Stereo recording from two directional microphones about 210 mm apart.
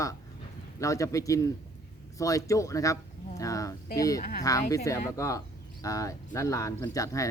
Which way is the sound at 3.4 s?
15° left (ahead or behind).